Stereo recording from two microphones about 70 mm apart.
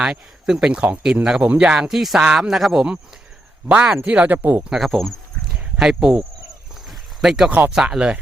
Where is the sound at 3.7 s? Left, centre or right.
Centre.